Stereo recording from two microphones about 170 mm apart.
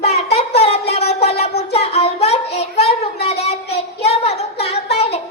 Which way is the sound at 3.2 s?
35° left (ahead or behind).